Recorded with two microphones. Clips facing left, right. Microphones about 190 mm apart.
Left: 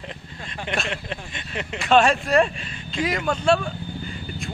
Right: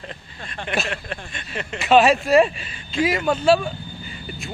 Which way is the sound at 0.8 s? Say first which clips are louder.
Even; 20° left (ahead or behind).